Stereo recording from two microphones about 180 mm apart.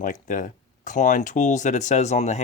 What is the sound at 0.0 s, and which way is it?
Speech, 45° left (ahead or behind).